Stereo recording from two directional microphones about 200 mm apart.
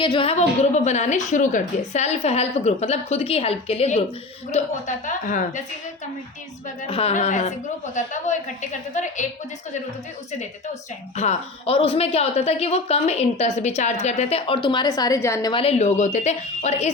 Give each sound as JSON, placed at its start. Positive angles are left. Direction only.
{"t": 0.0, "sound": "a woman's voice", "side_deg": 25}
{"t": 6.8, "sound": "a woman's voice", "side_deg": 30}
{"t": 11.2, "sound": "a woman's voice", "side_deg": 30}